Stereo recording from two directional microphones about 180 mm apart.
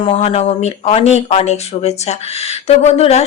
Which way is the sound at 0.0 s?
30° left (ahead or behind).